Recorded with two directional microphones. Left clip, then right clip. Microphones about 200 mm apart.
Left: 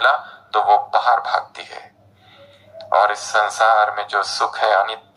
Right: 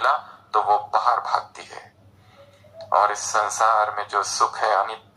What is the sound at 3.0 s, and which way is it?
Speech, 20° left (ahead or behind).